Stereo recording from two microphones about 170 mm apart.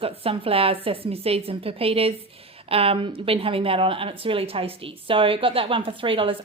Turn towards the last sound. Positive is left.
turn(degrees=-30)  # may be behind; listen again after turning